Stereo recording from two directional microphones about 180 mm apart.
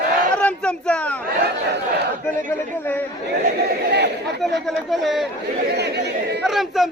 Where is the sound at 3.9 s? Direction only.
65° right (ahead or behind).